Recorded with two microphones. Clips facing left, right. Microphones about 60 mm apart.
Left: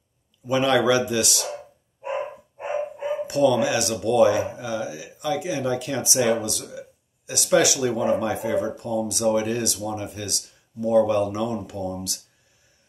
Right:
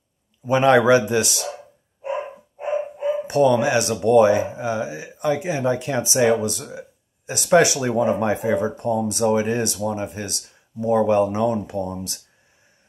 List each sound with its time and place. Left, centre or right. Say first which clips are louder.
0.5 s speech: right 5 dB; right
3.3 s speech: right 2 dB; right